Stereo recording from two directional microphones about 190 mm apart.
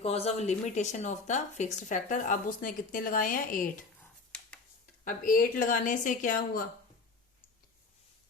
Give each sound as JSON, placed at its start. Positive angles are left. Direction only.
{"t": 0.0, "sound": "speech", "side_deg": 35}
{"t": 5.0, "sound": "a woman's voice", "side_deg": 45}